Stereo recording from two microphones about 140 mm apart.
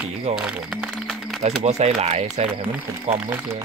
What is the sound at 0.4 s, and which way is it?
Music, 5° right (ahead or behind).